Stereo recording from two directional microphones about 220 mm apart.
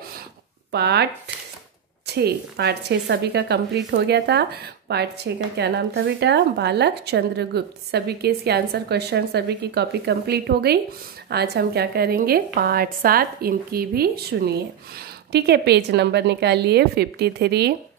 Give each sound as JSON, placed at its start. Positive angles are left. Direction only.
{"t": 0.7, "sound": "speech", "side_deg": -50}
{"t": 2.0, "sound": "a woman's voice", "side_deg": -50}